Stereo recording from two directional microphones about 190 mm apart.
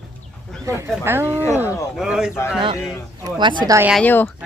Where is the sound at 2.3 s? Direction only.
10° left (ahead or behind).